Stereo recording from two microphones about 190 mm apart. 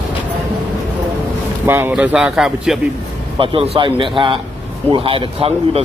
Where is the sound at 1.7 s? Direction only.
10° right (ahead or behind).